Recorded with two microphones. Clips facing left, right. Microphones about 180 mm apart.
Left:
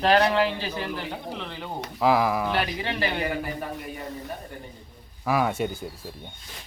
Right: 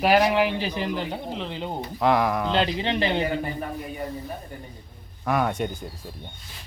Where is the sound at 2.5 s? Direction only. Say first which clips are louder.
Right 4 dB; 20° right (ahead or behind).